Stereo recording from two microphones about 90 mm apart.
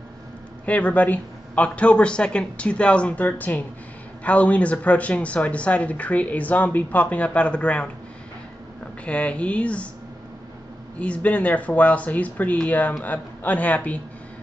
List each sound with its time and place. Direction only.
0.7 s speech: 15° left (ahead or behind)
9.0 s speech: 15° left (ahead or behind)
11.0 s speech: 15° left (ahead or behind)